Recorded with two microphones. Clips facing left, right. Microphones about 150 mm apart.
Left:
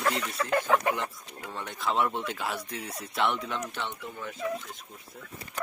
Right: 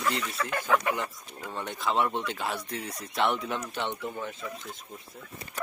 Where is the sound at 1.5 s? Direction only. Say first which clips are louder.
Right 1 dB; centre (ahead or behind).